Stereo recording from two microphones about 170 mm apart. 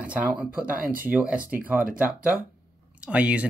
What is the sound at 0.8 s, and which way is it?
Speech, 55° right (ahead or behind).